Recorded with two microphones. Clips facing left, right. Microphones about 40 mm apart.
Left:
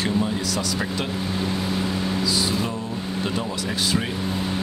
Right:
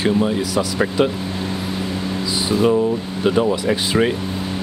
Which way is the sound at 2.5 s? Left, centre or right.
Right.